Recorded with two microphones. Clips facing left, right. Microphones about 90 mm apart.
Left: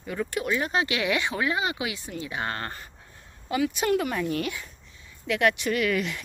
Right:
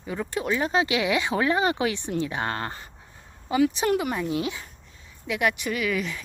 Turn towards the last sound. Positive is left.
turn(degrees=0)  # may be behind; listen again after turning